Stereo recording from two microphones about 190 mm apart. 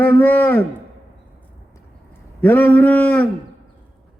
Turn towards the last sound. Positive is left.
turn(degrees=5)  # may be behind; listen again after turning